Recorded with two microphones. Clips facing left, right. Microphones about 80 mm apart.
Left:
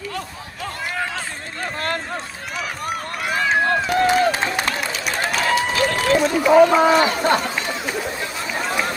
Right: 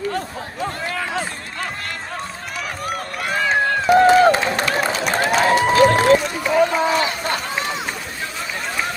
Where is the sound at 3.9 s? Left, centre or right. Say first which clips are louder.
Right 8 dB; right.